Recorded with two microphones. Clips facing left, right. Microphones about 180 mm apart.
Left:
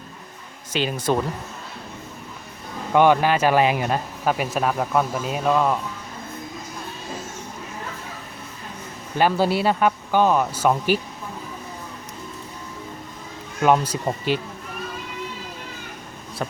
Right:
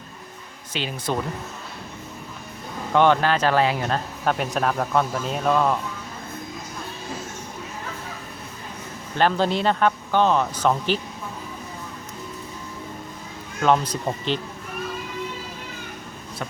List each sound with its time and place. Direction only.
0.7 s speech: 45° left (ahead or behind)
2.9 s speech: 10° left (ahead or behind)
9.1 s speech: 10° left (ahead or behind)
13.6 s speech: 10° left (ahead or behind)